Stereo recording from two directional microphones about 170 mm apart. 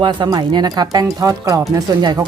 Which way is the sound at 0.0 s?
25° right (ahead or behind).